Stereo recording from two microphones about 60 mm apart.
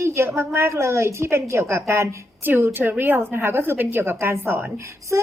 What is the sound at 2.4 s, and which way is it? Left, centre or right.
A woman's voice, right.